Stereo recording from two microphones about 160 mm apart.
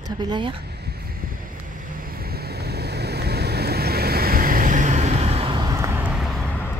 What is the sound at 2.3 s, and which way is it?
Vehicle, 90° right.